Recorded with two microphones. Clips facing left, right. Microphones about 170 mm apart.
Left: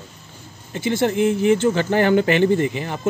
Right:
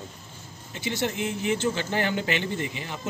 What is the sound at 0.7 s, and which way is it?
Speech, 50° left (ahead or behind).